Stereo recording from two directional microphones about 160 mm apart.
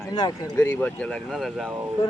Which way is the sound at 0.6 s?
10° left (ahead or behind).